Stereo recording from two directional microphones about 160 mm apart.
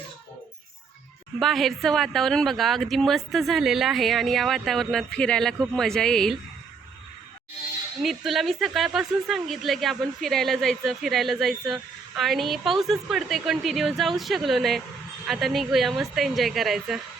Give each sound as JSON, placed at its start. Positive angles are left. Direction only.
{"t": 1.4, "sound": "speech", "side_deg": 0}
{"t": 8.0, "sound": "speech", "side_deg": 0}